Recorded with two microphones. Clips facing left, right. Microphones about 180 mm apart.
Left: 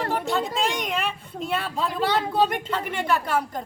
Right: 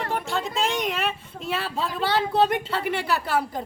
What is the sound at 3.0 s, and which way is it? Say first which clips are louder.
Speech: left 4 dB; 5° right (ahead or behind).